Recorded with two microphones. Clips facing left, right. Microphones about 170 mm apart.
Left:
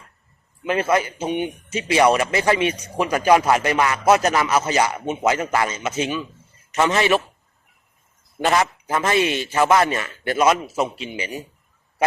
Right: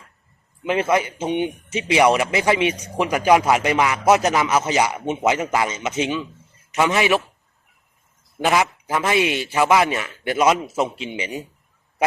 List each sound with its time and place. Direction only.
0.6 s speech: 20° right (ahead or behind)
8.4 s speech: 5° right (ahead or behind)